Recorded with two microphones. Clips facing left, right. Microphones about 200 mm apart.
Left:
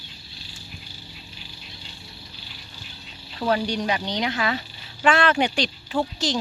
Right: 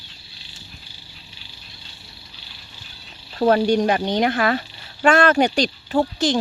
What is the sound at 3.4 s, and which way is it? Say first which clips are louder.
Speech: right 7 dB; 45° right (ahead or behind).